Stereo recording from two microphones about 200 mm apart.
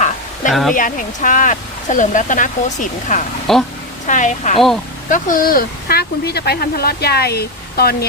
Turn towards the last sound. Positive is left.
turn(degrees=50)  # may be behind; listen again after turning